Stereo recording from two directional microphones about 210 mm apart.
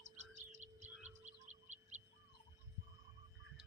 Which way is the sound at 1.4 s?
35° right (ahead or behind).